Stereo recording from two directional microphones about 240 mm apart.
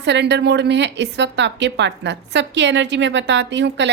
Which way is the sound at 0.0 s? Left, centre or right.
Right.